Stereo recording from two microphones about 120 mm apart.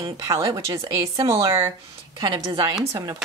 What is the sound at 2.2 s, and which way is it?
Speech, 40° right (ahead or behind).